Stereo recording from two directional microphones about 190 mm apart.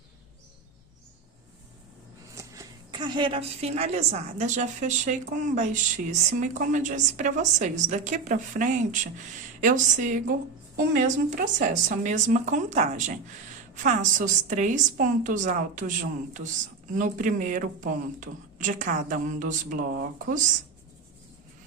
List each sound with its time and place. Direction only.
2.3 s a woman's voice: 15° right (ahead or behind); by 20.4 s 45° right (ahead or behind)